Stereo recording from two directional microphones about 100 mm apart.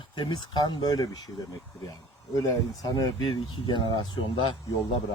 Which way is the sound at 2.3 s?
35° left (ahead or behind).